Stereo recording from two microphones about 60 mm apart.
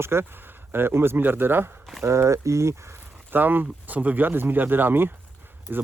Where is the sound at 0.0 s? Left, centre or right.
Right.